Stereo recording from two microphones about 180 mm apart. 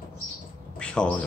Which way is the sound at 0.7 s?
5° left (ahead or behind).